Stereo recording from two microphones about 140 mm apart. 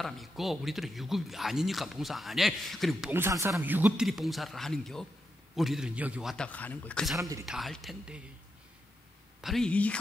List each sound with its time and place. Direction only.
0.0 s speech: centre (ahead or behind)
3.1 s speech: 20° right (ahead or behind)
6.3 s a man's voice: 10° left (ahead or behind)
7.4 s speech: centre (ahead or behind)
9.4 s a man's voice: centre (ahead or behind)